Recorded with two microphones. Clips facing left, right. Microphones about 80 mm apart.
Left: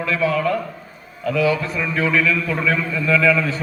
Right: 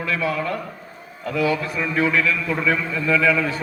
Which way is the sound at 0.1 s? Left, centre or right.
Centre.